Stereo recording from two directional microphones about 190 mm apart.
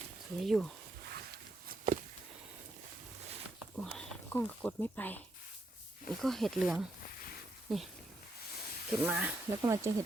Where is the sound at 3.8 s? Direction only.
5° left (ahead or behind).